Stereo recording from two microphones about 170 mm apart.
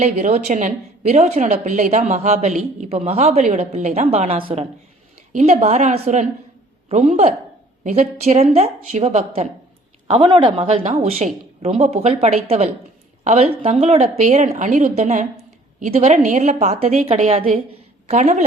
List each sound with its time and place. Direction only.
0.0 s a woman's voice: 45° right (ahead or behind)
5.3 s a woman's voice: 45° right (ahead or behind)
10.1 s a woman's voice: 30° right (ahead or behind)